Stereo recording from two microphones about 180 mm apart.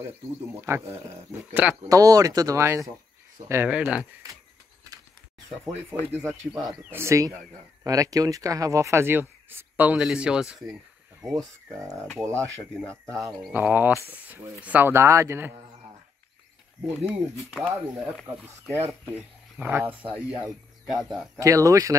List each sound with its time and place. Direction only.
0.6 s speech: 15° right (ahead or behind)
1.9 s speech: 20° right (ahead or behind)
6.1 s speech: 15° right (ahead or behind)
11.9 s speech: centre (ahead or behind)
13.0 s speech: 20° right (ahead or behind)
17.0 s speech: centre (ahead or behind)
17.7 s speech: 15° right (ahead or behind)
21.4 s speech: 20° right (ahead or behind)